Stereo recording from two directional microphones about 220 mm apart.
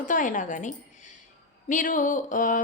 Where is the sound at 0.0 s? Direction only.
35° left (ahead or behind).